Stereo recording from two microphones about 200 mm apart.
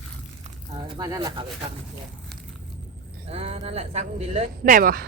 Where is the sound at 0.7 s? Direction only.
25° right (ahead or behind).